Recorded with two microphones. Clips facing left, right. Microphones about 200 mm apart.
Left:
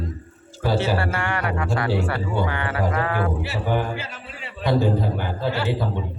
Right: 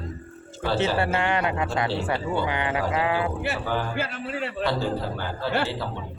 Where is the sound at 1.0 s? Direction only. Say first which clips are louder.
Right 2 dB; 20° right (ahead or behind).